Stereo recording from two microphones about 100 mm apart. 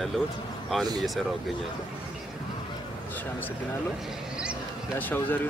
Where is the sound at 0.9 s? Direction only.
Centre (ahead or behind).